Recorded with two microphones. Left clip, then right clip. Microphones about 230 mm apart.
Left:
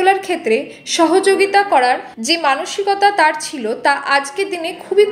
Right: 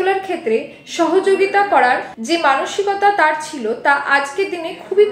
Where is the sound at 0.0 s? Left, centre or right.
Left.